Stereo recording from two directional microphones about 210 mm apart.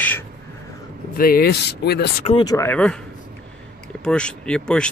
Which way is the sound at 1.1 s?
45° left (ahead or behind).